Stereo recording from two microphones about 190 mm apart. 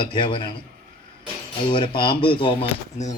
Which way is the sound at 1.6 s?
25° left (ahead or behind).